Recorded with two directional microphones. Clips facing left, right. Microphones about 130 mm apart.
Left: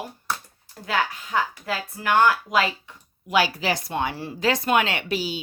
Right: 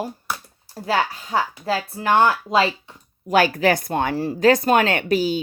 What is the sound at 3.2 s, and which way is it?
Speech, 50° right (ahead or behind).